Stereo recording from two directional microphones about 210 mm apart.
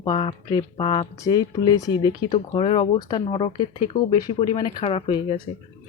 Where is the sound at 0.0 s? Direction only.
25° left (ahead or behind).